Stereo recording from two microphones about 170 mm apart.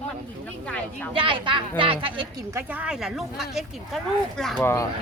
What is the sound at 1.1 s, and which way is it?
Speech, 30° right (ahead or behind).